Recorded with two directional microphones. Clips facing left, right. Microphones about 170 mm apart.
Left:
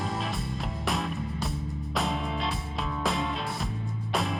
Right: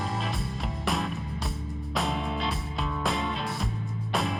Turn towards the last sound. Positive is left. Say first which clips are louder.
# even
turn(degrees=0)  # may be behind; listen again after turning